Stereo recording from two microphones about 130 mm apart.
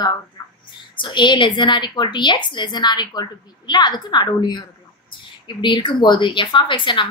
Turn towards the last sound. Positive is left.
turn(degrees=40)  # may be behind; listen again after turning